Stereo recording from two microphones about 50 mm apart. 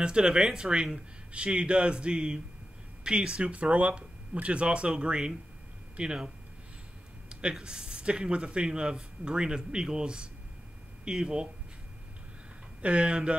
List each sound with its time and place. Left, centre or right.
0.0 s speech: centre
12.8 s speech: right